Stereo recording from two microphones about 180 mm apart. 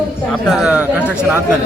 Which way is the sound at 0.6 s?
5° right (ahead or behind).